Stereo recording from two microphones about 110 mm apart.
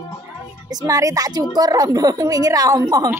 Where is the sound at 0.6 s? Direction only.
35° right (ahead or behind).